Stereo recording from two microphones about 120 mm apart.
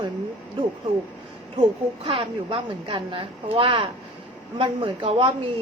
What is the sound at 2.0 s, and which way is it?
A woman's voice, 50° right (ahead or behind).